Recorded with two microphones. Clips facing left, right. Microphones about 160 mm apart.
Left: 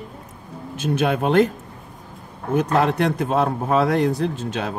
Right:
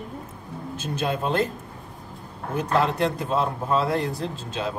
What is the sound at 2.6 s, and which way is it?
A man's voice, 60° left (ahead or behind).